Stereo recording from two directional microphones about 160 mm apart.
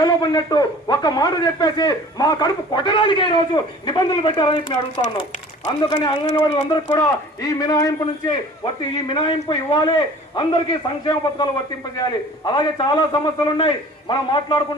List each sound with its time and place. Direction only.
0.0 s a man's voice: 25° left (ahead or behind)
6.9 s a man's voice: 20° left (ahead or behind)
12.5 s a man's voice: 30° left (ahead or behind)